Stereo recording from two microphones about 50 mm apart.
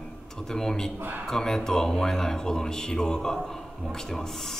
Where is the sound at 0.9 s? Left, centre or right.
Right.